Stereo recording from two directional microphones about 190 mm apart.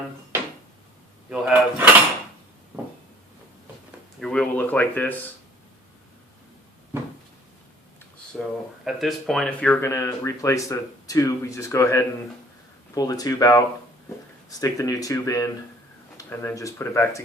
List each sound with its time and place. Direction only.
1.3 s drawer open or close: 5° right (ahead or behind)
4.2 s a sound: 5° left (ahead or behind)
8.4 s speech: centre (ahead or behind); by 17.2 s 15° left (ahead or behind)